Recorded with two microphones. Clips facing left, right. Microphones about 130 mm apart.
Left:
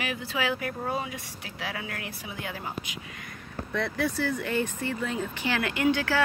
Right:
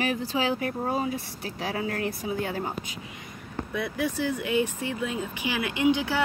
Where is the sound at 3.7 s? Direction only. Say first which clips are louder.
Left 1 dB; 10° right (ahead or behind).